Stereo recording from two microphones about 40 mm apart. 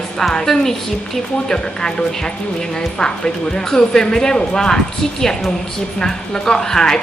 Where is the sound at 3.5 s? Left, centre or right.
Centre.